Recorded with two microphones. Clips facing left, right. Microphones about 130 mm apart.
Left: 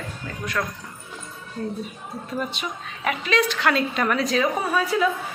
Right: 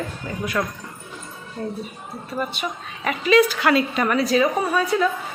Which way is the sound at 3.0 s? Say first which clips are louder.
Right 6 dB; centre (ahead or behind).